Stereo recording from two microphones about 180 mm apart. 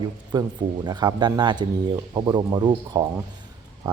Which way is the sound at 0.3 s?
20° right (ahead or behind).